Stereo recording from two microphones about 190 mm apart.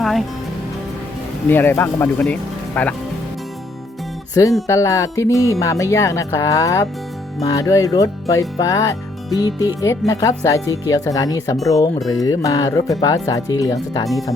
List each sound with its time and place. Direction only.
0.0 s music: centre (ahead or behind)
1.5 s speech: 10° left (ahead or behind)
4.6 s speech: 15° left (ahead or behind)